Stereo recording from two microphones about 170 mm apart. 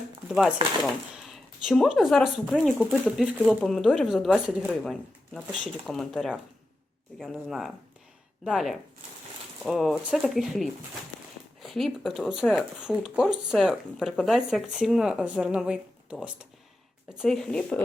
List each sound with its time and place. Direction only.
0.3 s speech: 5° right (ahead or behind)